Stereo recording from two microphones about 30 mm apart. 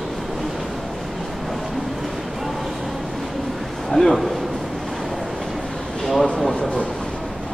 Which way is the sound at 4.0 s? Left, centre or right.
Centre.